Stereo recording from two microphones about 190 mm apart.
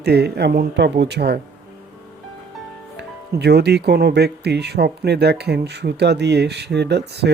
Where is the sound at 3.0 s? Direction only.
60° right (ahead or behind).